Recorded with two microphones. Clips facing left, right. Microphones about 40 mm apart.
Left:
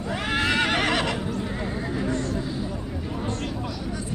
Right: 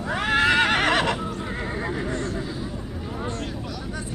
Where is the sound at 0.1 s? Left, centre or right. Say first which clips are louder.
Right 4 dB; right.